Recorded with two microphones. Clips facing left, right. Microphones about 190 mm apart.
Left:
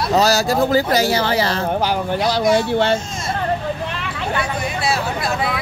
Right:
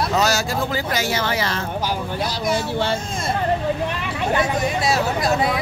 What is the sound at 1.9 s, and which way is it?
Speech, 65° left (ahead or behind).